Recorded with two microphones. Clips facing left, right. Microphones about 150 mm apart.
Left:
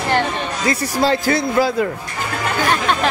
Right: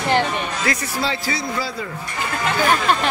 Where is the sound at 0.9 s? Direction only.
45° left (ahead or behind).